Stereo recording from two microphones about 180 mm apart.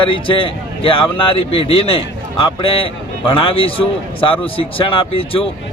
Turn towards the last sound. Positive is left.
turn(degrees=30)  # may be behind; listen again after turning